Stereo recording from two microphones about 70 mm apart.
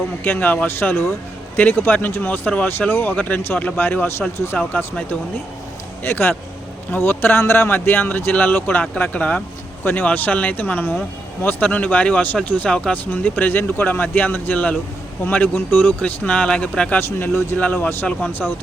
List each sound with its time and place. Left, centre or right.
0.3 s speech: left
3.4 s speech: left
6.0 s speech: left
17.0 s speech: left
18.4 s speech: centre